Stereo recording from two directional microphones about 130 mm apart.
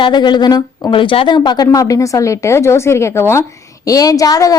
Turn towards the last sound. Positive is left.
turn(degrees=25)  # may be behind; listen again after turning